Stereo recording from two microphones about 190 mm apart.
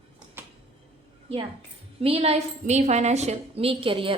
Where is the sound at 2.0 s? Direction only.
35° right (ahead or behind).